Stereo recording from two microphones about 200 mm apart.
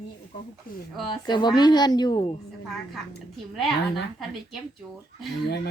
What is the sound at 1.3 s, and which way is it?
A woman's voice, 20° left (ahead or behind).